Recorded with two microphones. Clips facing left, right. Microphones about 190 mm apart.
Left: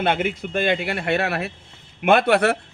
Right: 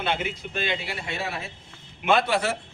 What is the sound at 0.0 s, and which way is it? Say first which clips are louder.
A man's voice: left 6 dB; 55° left (ahead or behind).